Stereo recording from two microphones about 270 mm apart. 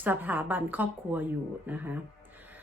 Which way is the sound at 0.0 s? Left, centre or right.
Centre.